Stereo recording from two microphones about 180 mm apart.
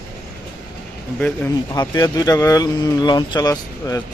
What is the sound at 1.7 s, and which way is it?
Speech, 20° left (ahead or behind).